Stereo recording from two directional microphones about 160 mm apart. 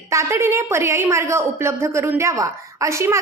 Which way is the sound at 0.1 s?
20° right (ahead or behind).